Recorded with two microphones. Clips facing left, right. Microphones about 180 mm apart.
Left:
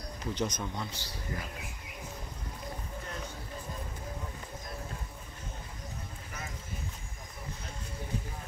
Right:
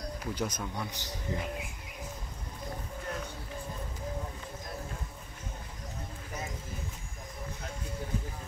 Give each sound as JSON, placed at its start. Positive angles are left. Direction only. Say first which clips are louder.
{"t": 0.2, "sound": "speech", "louder": "left 2 dB", "side_deg": -5}